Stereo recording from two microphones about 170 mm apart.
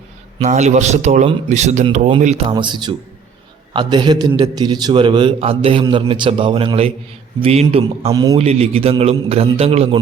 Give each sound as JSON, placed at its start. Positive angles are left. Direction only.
{"t": 0.3, "sound": "a man's voice", "side_deg": -40}
{"t": 8.1, "sound": "a man's voice", "side_deg": -20}
{"t": 8.4, "sound": "a man's voice", "side_deg": -35}